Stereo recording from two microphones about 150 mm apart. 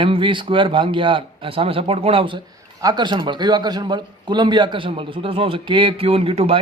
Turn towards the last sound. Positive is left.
turn(degrees=-40)  # may be behind; listen again after turning